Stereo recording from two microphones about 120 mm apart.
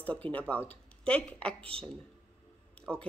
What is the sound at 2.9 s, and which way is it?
Speech, 5° left (ahead or behind).